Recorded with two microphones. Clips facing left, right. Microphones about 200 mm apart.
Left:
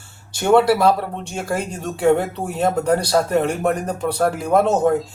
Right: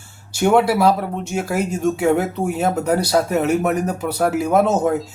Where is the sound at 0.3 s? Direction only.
10° right (ahead or behind).